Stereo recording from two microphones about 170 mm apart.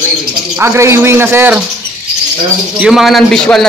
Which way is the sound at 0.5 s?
15° right (ahead or behind).